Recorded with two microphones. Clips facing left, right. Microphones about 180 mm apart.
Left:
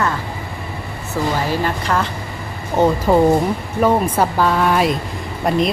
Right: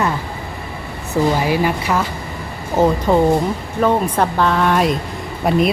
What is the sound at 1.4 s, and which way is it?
Speech, 10° right (ahead or behind).